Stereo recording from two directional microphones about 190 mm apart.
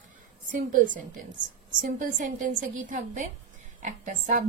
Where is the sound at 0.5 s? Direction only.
45° right (ahead or behind).